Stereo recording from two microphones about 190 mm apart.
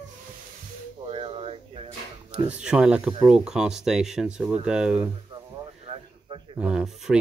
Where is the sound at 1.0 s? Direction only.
30° right (ahead or behind).